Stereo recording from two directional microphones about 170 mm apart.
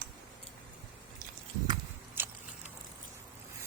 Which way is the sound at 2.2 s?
10° right (ahead or behind).